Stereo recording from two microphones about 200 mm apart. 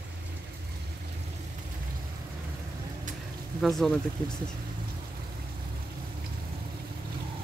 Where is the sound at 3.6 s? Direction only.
Centre (ahead or behind).